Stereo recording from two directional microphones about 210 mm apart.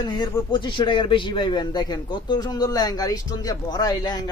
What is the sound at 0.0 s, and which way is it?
A man's voice, 20° left (ahead or behind).